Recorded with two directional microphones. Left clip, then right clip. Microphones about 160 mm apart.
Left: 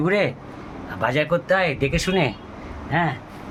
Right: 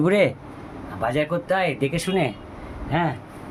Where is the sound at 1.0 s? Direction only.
Centre (ahead or behind).